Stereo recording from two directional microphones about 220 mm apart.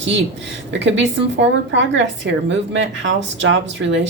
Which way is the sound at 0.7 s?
55° right (ahead or behind).